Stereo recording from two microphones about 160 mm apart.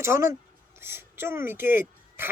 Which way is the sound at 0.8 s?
15° right (ahead or behind).